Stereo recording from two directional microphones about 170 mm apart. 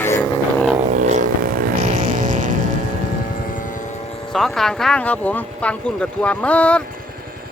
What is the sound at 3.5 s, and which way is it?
Vehicle, 50° left (ahead or behind).